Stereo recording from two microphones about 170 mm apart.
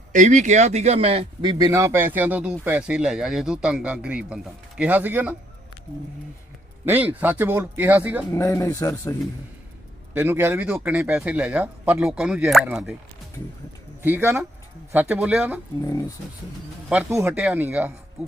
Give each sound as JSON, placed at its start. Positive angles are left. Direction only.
{"t": 0.1, "sound": "speech", "side_deg": -45}
{"t": 6.8, "sound": "speech", "side_deg": -10}
{"t": 8.3, "sound": "speech", "side_deg": 15}
{"t": 10.2, "sound": "speech", "side_deg": -10}
{"t": 14.0, "sound": "speech", "side_deg": -10}
{"t": 15.9, "sound": "speech", "side_deg": 20}
{"t": 16.9, "sound": "speech", "side_deg": -15}